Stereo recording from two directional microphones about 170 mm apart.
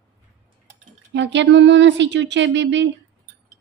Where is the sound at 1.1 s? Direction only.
90° right.